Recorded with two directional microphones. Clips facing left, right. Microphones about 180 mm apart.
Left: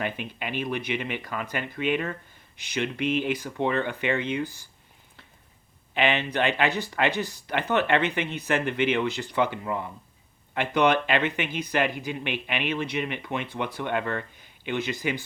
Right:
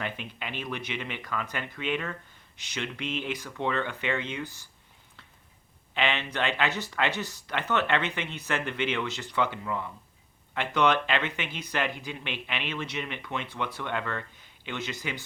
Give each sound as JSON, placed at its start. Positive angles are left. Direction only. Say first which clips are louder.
{"t": 0.0, "sound": "speech", "louder": "left 4 dB", "side_deg": 10}
{"t": 5.9, "sound": "speech", "louder": "left 5 dB", "side_deg": 15}